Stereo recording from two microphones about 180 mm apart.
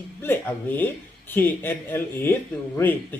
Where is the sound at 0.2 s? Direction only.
10° left (ahead or behind).